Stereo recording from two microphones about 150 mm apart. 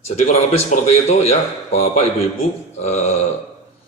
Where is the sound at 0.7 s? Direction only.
45° left (ahead or behind).